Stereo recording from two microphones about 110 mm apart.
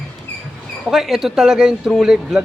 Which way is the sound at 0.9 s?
5° right (ahead or behind).